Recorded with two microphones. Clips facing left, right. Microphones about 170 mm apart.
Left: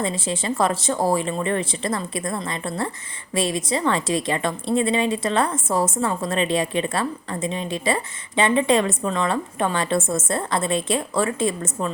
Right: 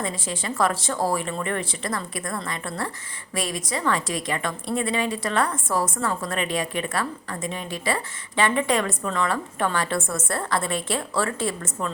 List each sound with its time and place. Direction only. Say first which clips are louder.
0.0 s a woman's voice: left 4 dB; 25° left (ahead or behind)